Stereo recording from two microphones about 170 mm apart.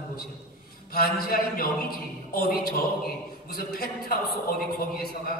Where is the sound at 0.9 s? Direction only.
60° left (ahead or behind).